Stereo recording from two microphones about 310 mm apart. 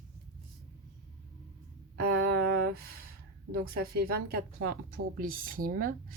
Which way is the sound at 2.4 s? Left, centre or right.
Right.